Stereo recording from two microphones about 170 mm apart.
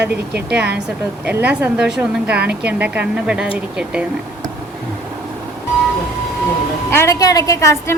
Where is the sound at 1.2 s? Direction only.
10° right (ahead or behind).